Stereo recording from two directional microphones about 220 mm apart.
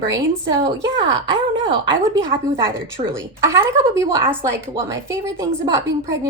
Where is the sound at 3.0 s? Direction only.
25° right (ahead or behind).